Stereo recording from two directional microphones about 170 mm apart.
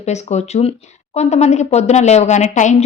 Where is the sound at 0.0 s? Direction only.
40° left (ahead or behind).